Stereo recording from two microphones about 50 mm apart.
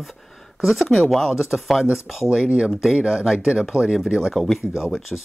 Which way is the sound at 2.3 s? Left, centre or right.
Centre.